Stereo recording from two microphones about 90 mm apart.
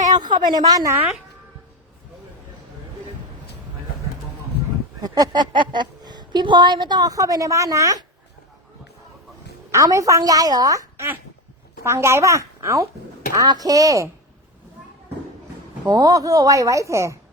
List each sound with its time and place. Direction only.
0.2 s speech: 55° right (ahead or behind)
4.9 s speech: 45° right (ahead or behind)
9.7 s speech: 35° right (ahead or behind)
10.9 s speech: 25° right (ahead or behind)
15.9 s speech: 45° right (ahead or behind)